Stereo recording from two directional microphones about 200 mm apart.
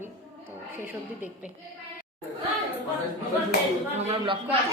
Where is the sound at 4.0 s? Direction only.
30° right (ahead or behind).